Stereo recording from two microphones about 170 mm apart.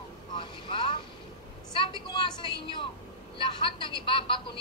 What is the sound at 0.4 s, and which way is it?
Vehicle, 30° left (ahead or behind).